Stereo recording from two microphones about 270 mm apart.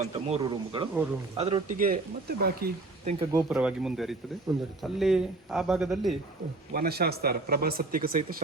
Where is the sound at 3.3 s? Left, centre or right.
Centre.